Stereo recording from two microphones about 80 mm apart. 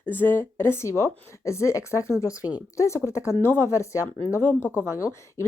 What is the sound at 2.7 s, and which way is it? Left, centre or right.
Speech, left.